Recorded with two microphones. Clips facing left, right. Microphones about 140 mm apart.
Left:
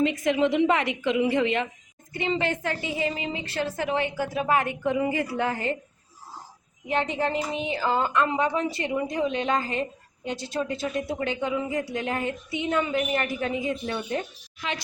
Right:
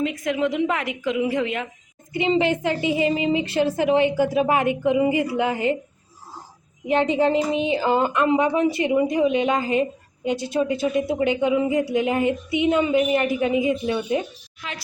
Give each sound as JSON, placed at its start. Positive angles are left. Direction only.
{"t": 0.0, "sound": "a woman's voice", "side_deg": 0}
{"t": 2.1, "sound": "speech", "side_deg": -20}
{"t": 6.8, "sound": "speech", "side_deg": -20}